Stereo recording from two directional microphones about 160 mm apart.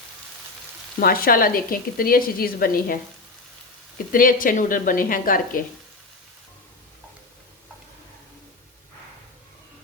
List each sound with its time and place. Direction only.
0.9 s speech: 70° left (ahead or behind)
4.1 s speech: 60° left (ahead or behind)